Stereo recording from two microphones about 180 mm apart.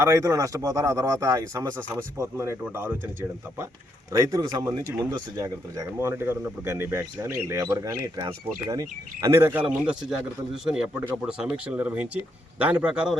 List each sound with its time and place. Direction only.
0.0 s a man's voice: 15° right (ahead or behind)